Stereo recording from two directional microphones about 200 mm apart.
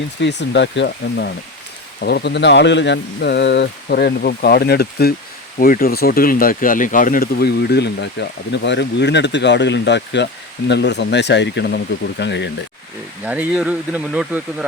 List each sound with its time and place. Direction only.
0.2 s speech: 60° left (ahead or behind)
13.2 s speech: 10° right (ahead or behind)